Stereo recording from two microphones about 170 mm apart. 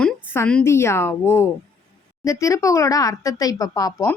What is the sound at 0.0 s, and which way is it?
A woman's voice, 10° left (ahead or behind).